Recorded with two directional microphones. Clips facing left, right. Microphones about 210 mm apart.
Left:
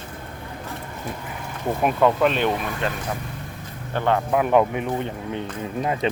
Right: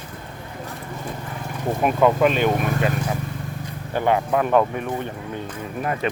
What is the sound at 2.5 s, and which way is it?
Speech, 50° right (ahead or behind).